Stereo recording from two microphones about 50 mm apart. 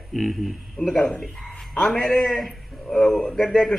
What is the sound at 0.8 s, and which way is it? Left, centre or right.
Speech, centre.